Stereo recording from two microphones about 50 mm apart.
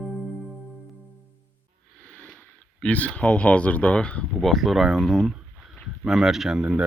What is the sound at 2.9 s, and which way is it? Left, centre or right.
Speech, left.